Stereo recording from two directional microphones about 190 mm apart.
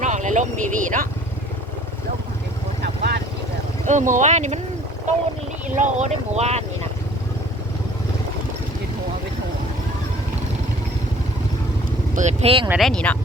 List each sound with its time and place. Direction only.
0.0 s speech: 40° right (ahead or behind)
2.8 s vehicle: 55° right (ahead or behind)
3.8 s speech: 40° right (ahead or behind)
5.6 s speech: 40° right (ahead or behind)
12.1 s speech: 35° right (ahead or behind)
12.6 s speech: 5° right (ahead or behind)
12.9 s speech: 5° left (ahead or behind)